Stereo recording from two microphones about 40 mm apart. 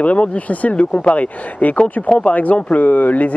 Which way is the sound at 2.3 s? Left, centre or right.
Left.